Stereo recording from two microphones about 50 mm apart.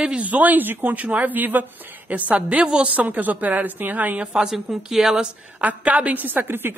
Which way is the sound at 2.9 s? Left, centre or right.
Right.